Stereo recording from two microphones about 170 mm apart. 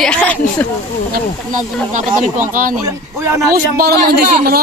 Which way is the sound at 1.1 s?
50° right (ahead or behind).